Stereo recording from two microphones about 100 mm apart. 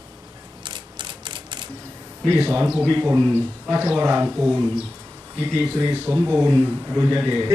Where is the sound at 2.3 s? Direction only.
20° right (ahead or behind).